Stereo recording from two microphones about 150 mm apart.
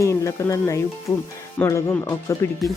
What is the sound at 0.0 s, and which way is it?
Speech, 20° left (ahead or behind).